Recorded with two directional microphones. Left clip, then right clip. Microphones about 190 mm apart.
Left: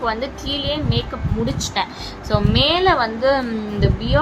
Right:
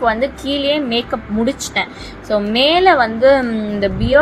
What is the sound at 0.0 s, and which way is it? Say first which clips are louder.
A woman's voice: right 6 dB; 25° right (ahead or behind).